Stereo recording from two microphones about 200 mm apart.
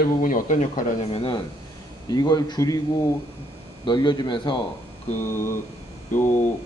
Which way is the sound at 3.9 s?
20° left (ahead or behind).